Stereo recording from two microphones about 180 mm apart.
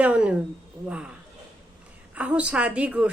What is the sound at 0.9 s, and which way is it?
Speech, 5° right (ahead or behind).